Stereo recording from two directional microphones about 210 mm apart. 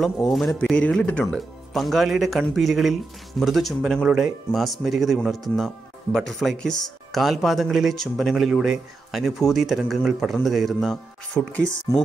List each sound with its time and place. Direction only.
0.0 s speech: centre (ahead or behind)